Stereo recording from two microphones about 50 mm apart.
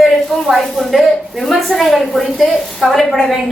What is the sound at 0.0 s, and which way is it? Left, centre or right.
A woman's voice, centre.